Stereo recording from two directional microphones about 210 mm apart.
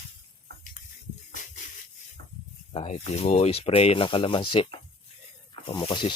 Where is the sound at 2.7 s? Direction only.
30° left (ahead or behind).